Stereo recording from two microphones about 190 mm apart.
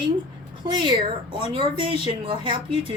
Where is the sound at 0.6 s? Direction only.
25° right (ahead or behind).